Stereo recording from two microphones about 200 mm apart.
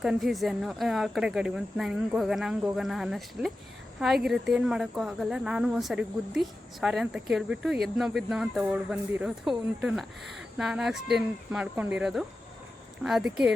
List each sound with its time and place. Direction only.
0.0 s speech: centre (ahead or behind)